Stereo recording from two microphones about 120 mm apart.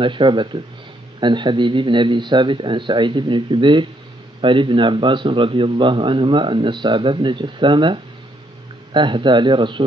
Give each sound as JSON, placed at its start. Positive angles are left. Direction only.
{"t": 0.0, "sound": "a man's voice", "side_deg": -45}